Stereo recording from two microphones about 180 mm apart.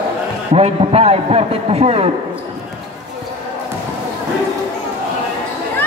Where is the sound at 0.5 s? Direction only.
35° right (ahead or behind).